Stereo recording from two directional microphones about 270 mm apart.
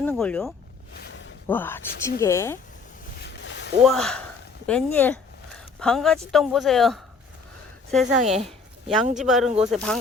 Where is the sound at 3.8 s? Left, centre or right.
Centre.